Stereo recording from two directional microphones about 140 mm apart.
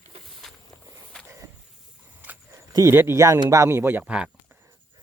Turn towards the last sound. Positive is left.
turn(degrees=-5)  # may be behind; listen again after turning